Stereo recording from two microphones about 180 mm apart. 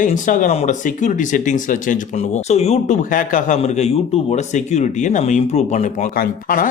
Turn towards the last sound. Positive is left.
turn(degrees=50)  # may be behind; listen again after turning